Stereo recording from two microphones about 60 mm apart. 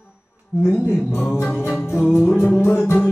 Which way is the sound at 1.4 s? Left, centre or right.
Left.